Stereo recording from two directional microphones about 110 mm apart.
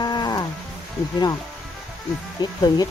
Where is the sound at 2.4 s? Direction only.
40° left (ahead or behind).